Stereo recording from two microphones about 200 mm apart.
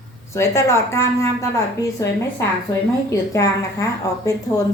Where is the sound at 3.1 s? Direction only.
15° left (ahead or behind).